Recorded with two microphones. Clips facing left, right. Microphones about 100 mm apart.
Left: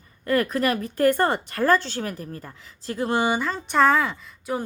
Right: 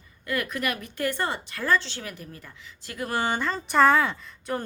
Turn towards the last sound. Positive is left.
turn(degrees=5)  # may be behind; listen again after turning